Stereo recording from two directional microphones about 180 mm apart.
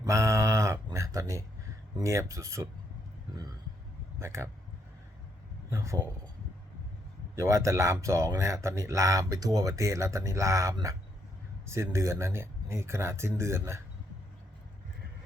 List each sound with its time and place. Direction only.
0.0 s a sound: 15° right (ahead or behind)
2.0 s speech: 15° right (ahead or behind)
4.2 s speech: 15° right (ahead or behind)
5.7 s speech: 15° right (ahead or behind)
7.3 s speech: 15° right (ahead or behind)